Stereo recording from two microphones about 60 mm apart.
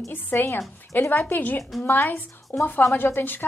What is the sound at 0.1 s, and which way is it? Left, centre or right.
A woman's voice, left.